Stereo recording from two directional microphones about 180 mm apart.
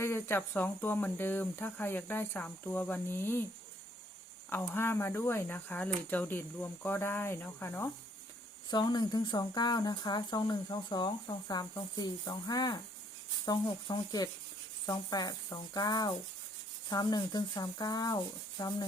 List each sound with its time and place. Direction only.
0.0 s speech: 10° left (ahead or behind)
4.4 s speech: 10° left (ahead or behind)
8.7 s speech: 25° left (ahead or behind)